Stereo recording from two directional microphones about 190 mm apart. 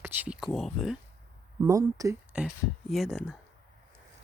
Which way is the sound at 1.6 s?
15° right (ahead or behind).